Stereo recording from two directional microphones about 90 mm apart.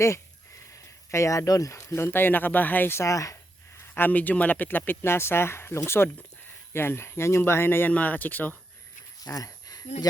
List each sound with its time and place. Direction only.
1.1 s speech: 35° left (ahead or behind)
3.8 s speech: 25° left (ahead or behind)
9.2 s a sound: 40° left (ahead or behind)